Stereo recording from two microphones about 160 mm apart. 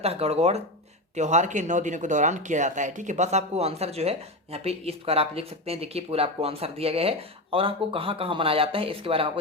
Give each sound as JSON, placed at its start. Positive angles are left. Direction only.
{"t": 0.0, "sound": "speech", "side_deg": -40}